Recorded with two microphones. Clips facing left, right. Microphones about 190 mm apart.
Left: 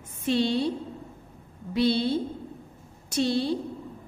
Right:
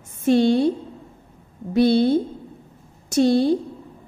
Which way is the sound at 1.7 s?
50° right (ahead or behind).